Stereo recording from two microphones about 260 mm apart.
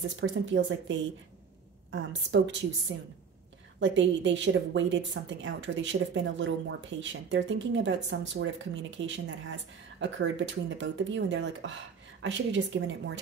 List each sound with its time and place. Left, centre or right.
0.2 s speech: right